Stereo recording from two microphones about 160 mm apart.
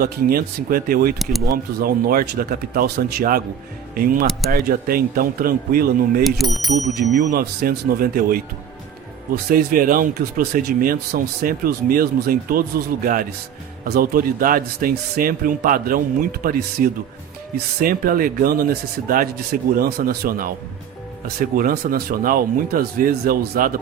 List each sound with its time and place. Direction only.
0.0 s speech: 65° right (ahead or behind)
6.2 s speech: centre (ahead or behind)
6.7 s speech: 50° right (ahead or behind)
7.3 s speech: 75° right (ahead or behind)
13.8 s speech: 75° right (ahead or behind)
21.5 s speech: 65° right (ahead or behind)